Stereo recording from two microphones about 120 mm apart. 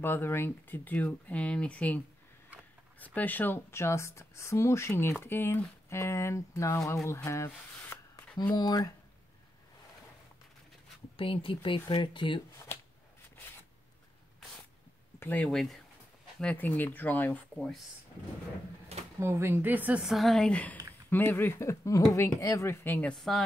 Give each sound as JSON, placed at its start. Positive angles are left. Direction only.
{"t": 0.0, "sound": "speech", "side_deg": 20}
{"t": 3.0, "sound": "a woman's voice", "side_deg": 15}
{"t": 11.1, "sound": "speech", "side_deg": 50}
{"t": 15.1, "sound": "speech", "side_deg": 15}
{"t": 19.1, "sound": "speech", "side_deg": -20}
{"t": 23.1, "sound": "speech", "side_deg": 0}